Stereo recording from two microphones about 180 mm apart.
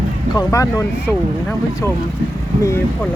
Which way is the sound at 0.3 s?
20° left (ahead or behind).